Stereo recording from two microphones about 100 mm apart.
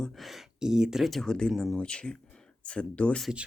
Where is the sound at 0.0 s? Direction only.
Centre (ahead or behind).